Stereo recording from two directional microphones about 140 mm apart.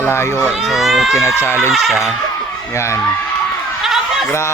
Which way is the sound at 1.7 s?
Centre (ahead or behind).